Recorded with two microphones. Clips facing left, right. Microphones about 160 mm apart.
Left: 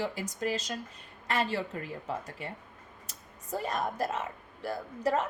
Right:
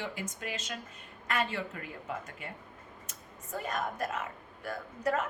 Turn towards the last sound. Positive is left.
turn(degrees=30)  # may be behind; listen again after turning